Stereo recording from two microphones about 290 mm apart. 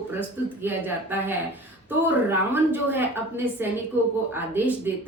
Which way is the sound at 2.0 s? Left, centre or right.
Centre.